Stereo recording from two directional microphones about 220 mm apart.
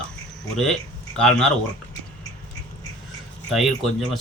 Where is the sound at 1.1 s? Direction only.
5° left (ahead or behind).